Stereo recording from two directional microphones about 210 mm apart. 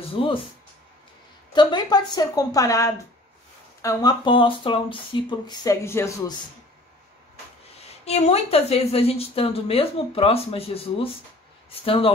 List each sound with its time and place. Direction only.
0.2 s a woman's voice: 25° left (ahead or behind)
1.5 s a woman's voice: 20° left (ahead or behind)
8.0 s a woman's voice: 30° left (ahead or behind)